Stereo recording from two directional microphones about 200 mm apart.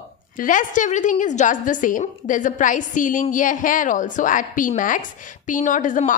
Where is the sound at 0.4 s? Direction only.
40° left (ahead or behind).